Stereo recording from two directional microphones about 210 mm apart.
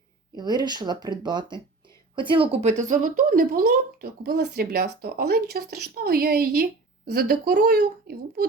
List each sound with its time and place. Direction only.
0.3 s speech: 20° right (ahead or behind); by 8.4 s 45° right (ahead or behind)